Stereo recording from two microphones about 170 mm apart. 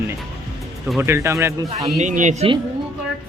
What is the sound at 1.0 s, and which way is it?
Speech, 15° right (ahead or behind).